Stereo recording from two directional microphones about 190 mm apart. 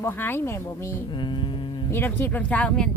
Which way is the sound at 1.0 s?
25° left (ahead or behind).